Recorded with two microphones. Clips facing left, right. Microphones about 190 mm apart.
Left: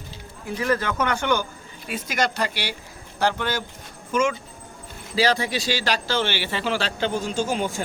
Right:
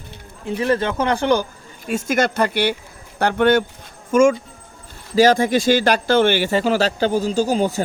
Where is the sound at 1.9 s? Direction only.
45° right (ahead or behind).